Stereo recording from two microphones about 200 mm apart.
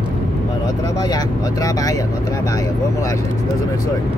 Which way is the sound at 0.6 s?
15° left (ahead or behind).